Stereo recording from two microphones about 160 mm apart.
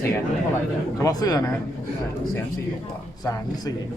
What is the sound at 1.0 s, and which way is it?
Speech, 20° left (ahead or behind).